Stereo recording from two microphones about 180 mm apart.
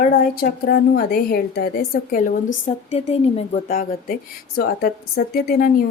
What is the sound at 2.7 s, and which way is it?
Speech, 35° left (ahead or behind).